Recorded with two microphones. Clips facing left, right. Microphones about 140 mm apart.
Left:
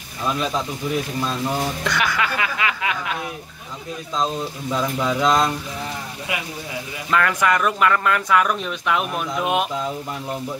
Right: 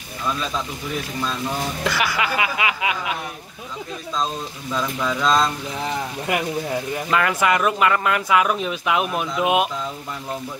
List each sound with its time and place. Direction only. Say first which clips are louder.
1.9 s speech: right 2 dB; 5° right (ahead or behind)
4.7 s speech: left 2 dB; 20° left (ahead or behind)
7.1 s speech: left 1 dB; 5° right (ahead or behind)